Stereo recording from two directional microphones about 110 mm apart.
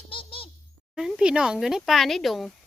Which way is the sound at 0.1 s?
55° left (ahead or behind).